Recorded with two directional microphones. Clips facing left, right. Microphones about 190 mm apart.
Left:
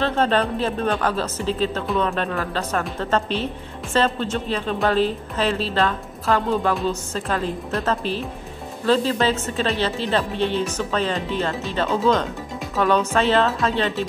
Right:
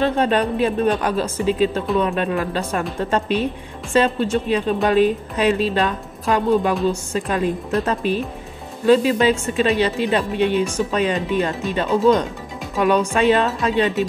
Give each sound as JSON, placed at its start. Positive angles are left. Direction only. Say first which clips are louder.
{"t": 0.0, "sound": "speech", "louder": "right 2 dB", "side_deg": -15}